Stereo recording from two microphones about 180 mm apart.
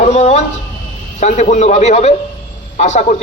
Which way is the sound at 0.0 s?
40° left (ahead or behind).